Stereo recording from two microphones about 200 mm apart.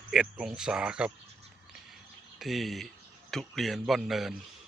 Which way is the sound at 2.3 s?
Centre (ahead or behind).